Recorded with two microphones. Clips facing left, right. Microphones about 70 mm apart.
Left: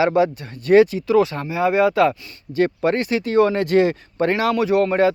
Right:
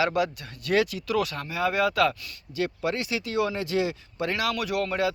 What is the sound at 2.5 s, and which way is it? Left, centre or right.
Speech, left.